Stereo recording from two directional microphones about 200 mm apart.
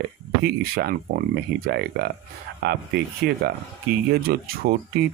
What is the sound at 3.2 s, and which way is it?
Speech, 55° right (ahead or behind).